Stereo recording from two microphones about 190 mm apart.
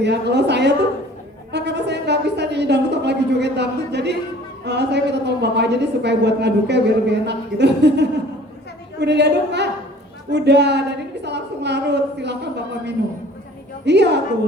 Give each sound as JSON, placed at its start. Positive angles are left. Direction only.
{"t": 0.0, "sound": "a woman's voice", "side_deg": -65}
{"t": 13.8, "sound": "a woman's voice", "side_deg": -65}